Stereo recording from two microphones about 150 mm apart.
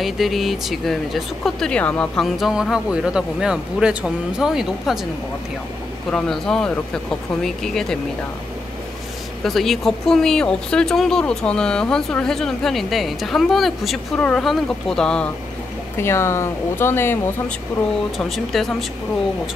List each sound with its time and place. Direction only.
0.0 s speech: centre (ahead or behind)
6.0 s speech: 5° left (ahead or behind)
9.4 s speech: centre (ahead or behind)
16.0 s speech: 15° left (ahead or behind)
18.1 s speech: centre (ahead or behind)